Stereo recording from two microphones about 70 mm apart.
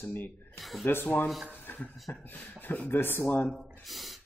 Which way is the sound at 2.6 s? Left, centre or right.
Left.